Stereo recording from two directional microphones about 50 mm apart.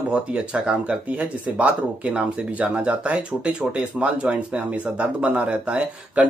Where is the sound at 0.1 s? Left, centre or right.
Right.